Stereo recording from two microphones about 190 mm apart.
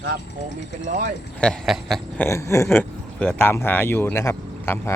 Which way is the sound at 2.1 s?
10° left (ahead or behind).